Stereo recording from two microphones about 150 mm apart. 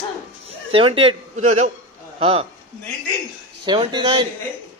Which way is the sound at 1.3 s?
50° right (ahead or behind).